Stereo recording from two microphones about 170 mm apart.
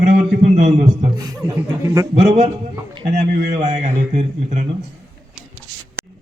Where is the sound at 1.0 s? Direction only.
25° right (ahead or behind).